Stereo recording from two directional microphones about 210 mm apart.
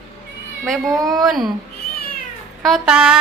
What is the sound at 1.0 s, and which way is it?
Speech, 15° right (ahead or behind).